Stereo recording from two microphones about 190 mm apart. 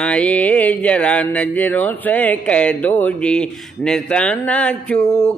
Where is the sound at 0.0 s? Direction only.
5° left (ahead or behind).